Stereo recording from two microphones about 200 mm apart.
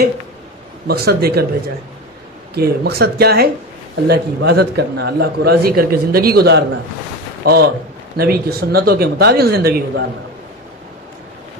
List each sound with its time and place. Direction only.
0.8 s a man's voice: 50° right (ahead or behind)
2.5 s a man's voice: 50° right (ahead or behind)